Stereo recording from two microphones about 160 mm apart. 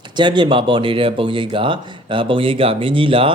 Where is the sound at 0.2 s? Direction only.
30° right (ahead or behind).